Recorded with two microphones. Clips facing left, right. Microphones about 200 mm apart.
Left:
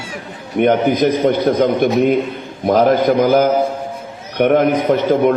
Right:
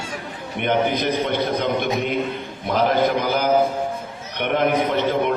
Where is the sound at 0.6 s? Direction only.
45° left (ahead or behind).